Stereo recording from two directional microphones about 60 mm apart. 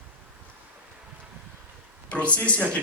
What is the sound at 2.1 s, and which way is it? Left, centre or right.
Speech, left.